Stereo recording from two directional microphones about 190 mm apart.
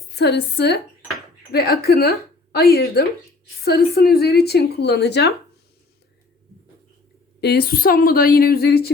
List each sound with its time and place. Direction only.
0.2 s a woman's voice: 60° left (ahead or behind)
7.4 s speech: 55° left (ahead or behind)